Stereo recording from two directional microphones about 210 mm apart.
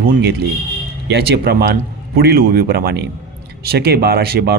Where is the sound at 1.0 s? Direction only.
50° right (ahead or behind).